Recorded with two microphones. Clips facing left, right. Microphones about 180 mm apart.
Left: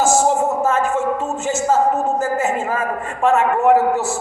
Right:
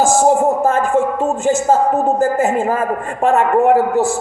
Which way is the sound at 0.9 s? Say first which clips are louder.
Right 5 dB; 55° right (ahead or behind).